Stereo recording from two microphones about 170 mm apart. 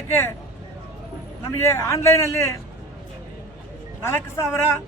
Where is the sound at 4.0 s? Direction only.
15° left (ahead or behind).